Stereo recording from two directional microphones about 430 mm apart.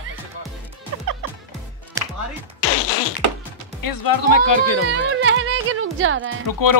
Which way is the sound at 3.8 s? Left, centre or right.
Left.